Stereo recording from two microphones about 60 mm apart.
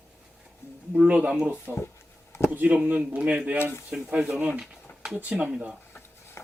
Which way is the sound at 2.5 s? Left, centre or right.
Right.